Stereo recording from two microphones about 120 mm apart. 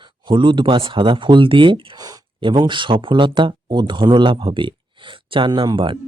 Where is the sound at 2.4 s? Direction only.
40° right (ahead or behind).